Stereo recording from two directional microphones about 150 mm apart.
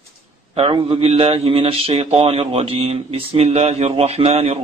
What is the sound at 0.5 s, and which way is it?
A man's voice, 35° right (ahead or behind).